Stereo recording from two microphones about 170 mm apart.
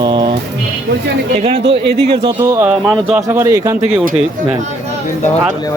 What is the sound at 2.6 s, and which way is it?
Speech, 10° right (ahead or behind).